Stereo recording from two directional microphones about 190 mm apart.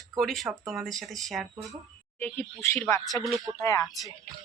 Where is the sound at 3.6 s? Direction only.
15° left (ahead or behind).